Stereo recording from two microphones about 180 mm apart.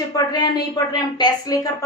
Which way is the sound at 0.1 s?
20° left (ahead or behind).